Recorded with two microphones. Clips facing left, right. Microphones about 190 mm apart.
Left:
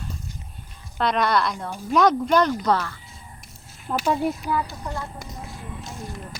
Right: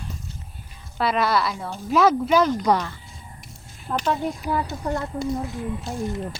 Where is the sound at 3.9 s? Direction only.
5° left (ahead or behind).